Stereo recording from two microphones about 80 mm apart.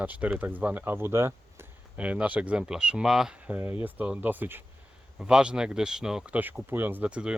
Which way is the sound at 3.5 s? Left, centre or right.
Right.